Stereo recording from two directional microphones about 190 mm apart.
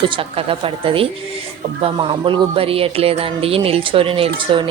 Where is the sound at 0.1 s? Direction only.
30° right (ahead or behind).